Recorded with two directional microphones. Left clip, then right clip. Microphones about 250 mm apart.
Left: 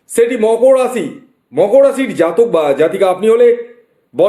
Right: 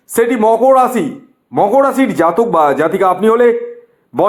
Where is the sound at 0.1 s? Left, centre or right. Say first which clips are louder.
Even; right.